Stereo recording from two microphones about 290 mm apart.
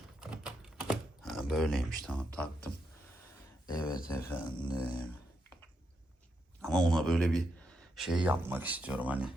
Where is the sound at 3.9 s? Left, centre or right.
Left.